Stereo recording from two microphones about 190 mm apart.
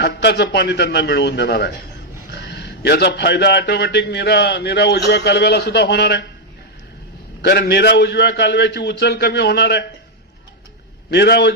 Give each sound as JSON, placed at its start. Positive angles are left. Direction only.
{"t": 0.0, "sound": "a man's voice", "side_deg": 60}
{"t": 7.4, "sound": "a man's voice", "side_deg": 60}
{"t": 11.1, "sound": "a man's voice", "side_deg": 60}